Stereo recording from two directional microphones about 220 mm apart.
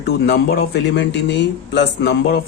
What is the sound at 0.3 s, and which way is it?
Speech, 45° left (ahead or behind).